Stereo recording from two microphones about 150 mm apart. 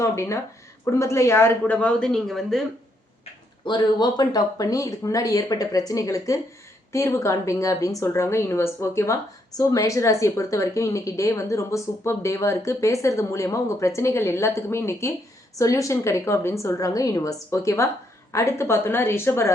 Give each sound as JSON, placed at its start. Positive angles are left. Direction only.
{"t": 0.0, "sound": "a woman's voice", "side_deg": 20}
{"t": 3.7, "sound": "a woman's voice", "side_deg": 30}